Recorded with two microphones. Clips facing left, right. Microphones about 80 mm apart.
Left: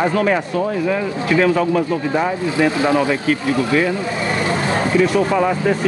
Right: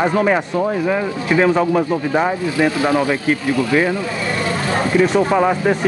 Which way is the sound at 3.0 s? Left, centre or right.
Right.